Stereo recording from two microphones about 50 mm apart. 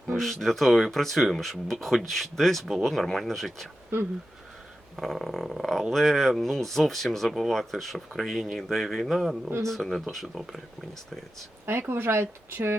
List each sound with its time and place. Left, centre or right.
0.2 s speech: centre
4.9 s speech: centre
11.6 s speech: right